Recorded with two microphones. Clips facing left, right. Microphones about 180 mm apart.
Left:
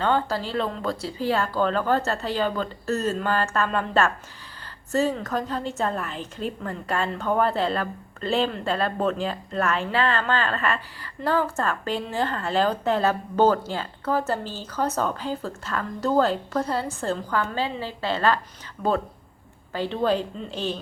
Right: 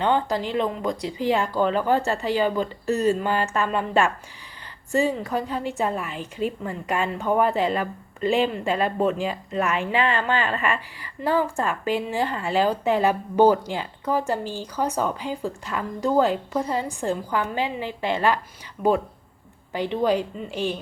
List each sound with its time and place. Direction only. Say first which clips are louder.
0.0 s a woman's voice: right 1 dB; 15° right (ahead or behind)